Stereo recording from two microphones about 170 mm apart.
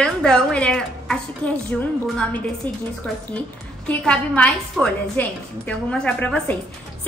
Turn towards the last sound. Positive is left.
turn(degrees=5)  # may be behind; listen again after turning